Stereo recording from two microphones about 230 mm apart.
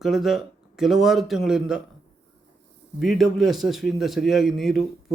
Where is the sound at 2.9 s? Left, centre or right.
Centre.